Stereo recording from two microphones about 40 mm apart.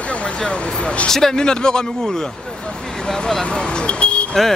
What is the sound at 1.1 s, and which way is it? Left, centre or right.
Speech, centre.